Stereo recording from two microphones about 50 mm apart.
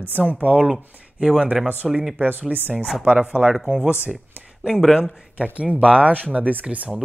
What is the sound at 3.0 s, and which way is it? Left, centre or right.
Speech, right.